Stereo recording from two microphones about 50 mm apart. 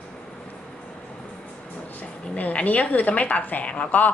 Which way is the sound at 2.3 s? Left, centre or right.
Left.